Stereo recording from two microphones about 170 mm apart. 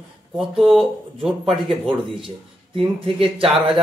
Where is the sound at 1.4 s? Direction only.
30° right (ahead or behind).